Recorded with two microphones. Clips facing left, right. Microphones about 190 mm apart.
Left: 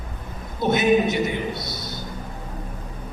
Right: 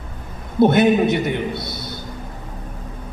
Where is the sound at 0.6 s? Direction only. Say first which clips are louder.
Right 5 dB; 60° right (ahead or behind).